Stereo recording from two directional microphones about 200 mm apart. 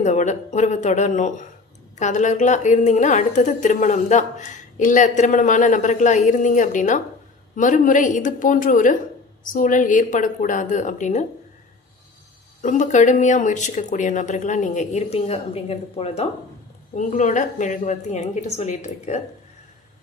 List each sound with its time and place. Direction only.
0.0 s a woman's voice: 35° left (ahead or behind)
12.6 s a woman's voice: 40° left (ahead or behind)